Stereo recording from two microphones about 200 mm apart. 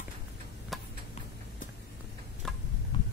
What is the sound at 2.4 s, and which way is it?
Tick-tock, 5° left (ahead or behind).